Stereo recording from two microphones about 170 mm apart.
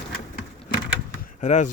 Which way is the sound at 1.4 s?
45° left (ahead or behind).